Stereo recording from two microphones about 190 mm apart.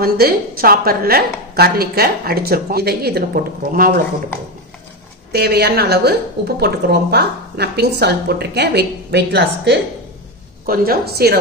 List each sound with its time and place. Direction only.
0.0 s a woman's voice: 50° right (ahead or behind)
5.3 s a woman's voice: 55° right (ahead or behind)